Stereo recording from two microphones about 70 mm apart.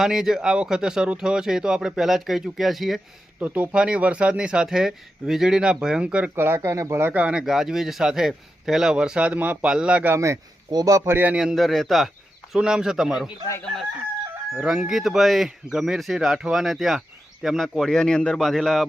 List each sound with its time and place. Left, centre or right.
0.0 s speech: centre
3.4 s speech: right
6.3 s speech: right
7.1 s speech: centre
7.4 s speech: centre
10.7 s a man's voice: right
11.0 s speech: right
11.3 s speech: centre
14.6 s speech: centre